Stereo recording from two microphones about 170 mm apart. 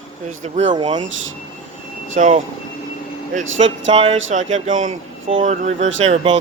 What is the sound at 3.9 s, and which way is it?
Speech, 40° right (ahead or behind).